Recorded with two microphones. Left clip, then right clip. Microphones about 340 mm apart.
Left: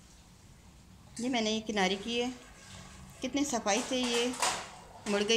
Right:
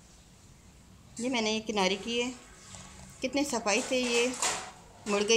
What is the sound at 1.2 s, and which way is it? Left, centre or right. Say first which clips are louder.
A woman's voice: right 2 dB; centre.